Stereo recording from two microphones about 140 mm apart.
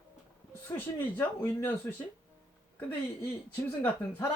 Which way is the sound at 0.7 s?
15° left (ahead or behind).